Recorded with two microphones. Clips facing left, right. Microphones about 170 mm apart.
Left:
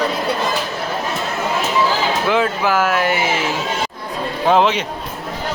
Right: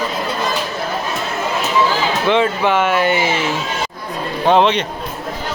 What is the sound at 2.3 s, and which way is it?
Speech, centre (ahead or behind).